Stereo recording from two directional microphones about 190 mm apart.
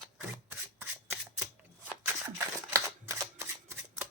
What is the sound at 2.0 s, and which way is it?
Camera, 15° right (ahead or behind).